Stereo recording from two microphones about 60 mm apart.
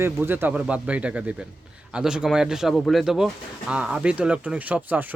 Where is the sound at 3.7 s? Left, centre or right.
Centre.